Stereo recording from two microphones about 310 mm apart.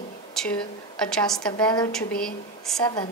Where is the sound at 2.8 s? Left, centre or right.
Centre.